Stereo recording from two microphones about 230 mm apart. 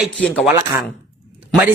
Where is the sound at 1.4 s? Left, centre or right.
Centre.